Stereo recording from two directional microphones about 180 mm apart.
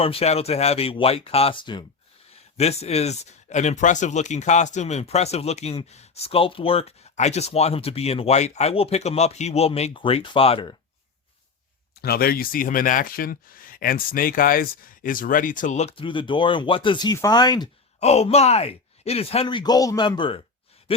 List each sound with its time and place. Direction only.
0.0 s speech: 35° left (ahead or behind)
12.0 s speech: 60° left (ahead or behind); by 17.7 s 20° left (ahead or behind)
18.0 s speech: 35° left (ahead or behind)